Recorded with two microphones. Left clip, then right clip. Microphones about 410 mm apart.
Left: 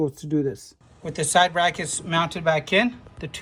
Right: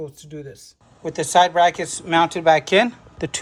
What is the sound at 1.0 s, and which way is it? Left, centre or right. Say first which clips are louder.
Speech: right 4 dB; centre.